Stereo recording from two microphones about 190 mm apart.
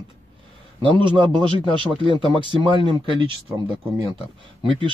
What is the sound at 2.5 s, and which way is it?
Speech, 25° right (ahead or behind).